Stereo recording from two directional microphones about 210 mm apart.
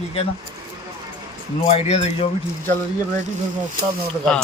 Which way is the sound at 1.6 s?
30° left (ahead or behind).